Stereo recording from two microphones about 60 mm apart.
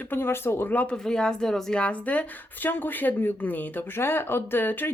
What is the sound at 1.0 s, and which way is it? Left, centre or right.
Speech, centre.